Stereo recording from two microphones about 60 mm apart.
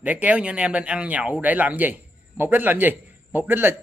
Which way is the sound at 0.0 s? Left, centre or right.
Right.